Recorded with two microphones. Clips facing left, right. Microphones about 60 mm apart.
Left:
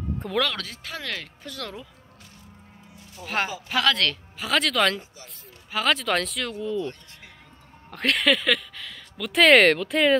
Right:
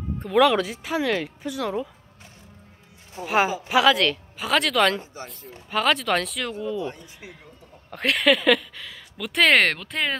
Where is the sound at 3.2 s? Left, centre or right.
Centre.